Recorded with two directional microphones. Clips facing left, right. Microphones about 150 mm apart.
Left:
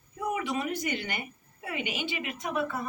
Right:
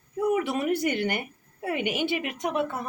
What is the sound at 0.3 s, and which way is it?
A woman's voice, 65° right (ahead or behind).